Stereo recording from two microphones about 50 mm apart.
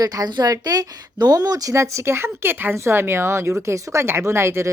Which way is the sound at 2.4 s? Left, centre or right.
Right.